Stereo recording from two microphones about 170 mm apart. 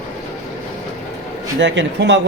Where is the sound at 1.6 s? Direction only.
90° right.